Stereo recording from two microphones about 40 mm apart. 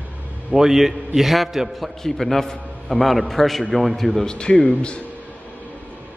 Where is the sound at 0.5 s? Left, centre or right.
Centre.